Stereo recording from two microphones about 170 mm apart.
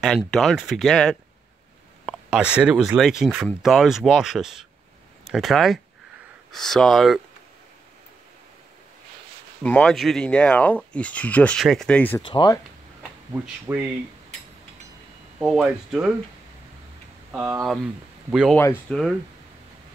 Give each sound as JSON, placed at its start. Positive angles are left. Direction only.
{"t": 0.0, "sound": "speech", "side_deg": 0}
{"t": 9.6, "sound": "speech", "side_deg": 5}
{"t": 12.2, "sound": "speech", "side_deg": 25}
{"t": 13.3, "sound": "speech", "side_deg": -10}
{"t": 15.3, "sound": "speech", "side_deg": -5}
{"t": 17.3, "sound": "speech", "side_deg": -15}
{"t": 18.6, "sound": "speech", "side_deg": 15}